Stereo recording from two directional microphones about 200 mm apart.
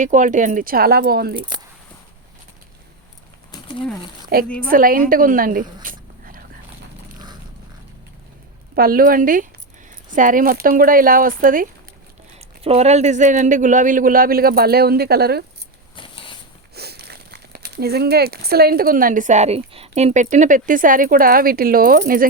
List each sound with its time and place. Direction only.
0.0 s a man's voice: 40° right (ahead or behind)
4.6 s a man's voice: 45° right (ahead or behind)
5.8 s a sound: 45° right (ahead or behind)
8.7 s a man's voice: 45° right (ahead or behind)
12.6 s a man's voice: 30° right (ahead or behind); by 15.4 s 50° right (ahead or behind)
16.0 s a sound: 25° left (ahead or behind)
16.7 s speech: 55° right (ahead or behind)